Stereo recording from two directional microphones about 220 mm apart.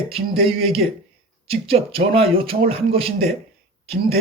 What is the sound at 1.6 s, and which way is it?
Speech, 25° right (ahead or behind).